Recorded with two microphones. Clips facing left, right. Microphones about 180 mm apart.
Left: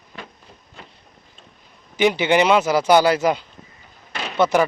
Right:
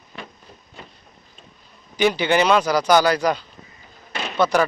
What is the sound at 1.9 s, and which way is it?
Speech, 20° left (ahead or behind).